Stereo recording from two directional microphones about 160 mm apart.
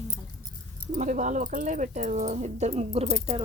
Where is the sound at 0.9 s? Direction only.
50° right (ahead or behind).